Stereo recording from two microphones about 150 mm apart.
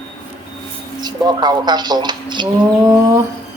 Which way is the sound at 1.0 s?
30° right (ahead or behind).